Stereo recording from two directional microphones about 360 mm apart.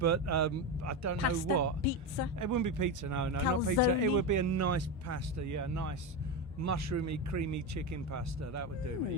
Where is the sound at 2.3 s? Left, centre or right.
Right.